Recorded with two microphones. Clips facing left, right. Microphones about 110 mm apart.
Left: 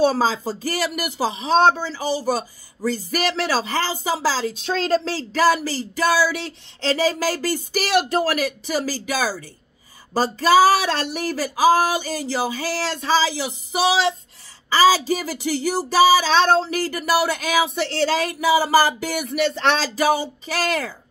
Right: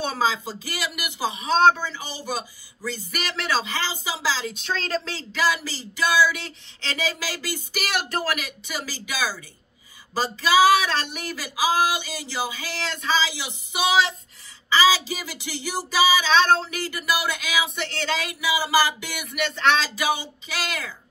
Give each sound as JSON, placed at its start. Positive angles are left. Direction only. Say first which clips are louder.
{"t": 0.0, "sound": "speech", "louder": "left 6 dB", "side_deg": 40}